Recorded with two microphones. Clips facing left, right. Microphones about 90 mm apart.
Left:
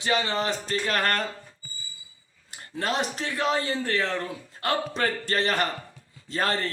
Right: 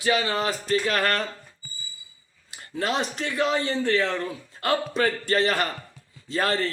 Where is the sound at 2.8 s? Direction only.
40° left (ahead or behind).